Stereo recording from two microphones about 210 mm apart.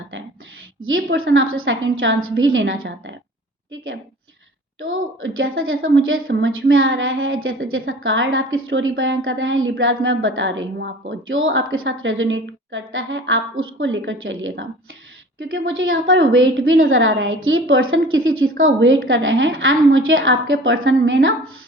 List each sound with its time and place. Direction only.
0.8 s a woman's voice: 75° right (ahead or behind)
4.8 s a woman's voice: 70° right (ahead or behind)